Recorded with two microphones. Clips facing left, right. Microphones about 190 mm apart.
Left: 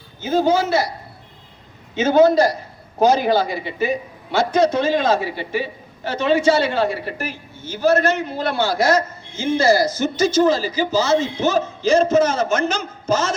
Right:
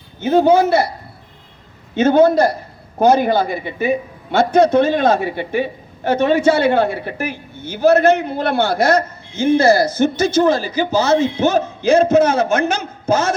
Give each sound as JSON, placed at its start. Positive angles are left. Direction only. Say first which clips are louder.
{"t": 0.2, "sound": "a man's voice", "louder": "right 5 dB", "side_deg": -60}
{"t": 2.0, "sound": "a man's voice", "louder": "right 2 dB", "side_deg": -60}